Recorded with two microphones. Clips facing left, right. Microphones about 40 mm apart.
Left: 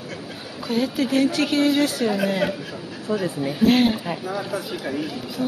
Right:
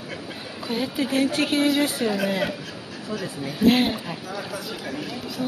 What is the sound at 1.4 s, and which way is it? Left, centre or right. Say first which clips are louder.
Speech: left 2 dB; centre.